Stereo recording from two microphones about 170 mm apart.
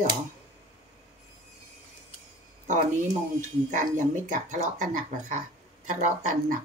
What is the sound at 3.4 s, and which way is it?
Speech, 45° right (ahead or behind).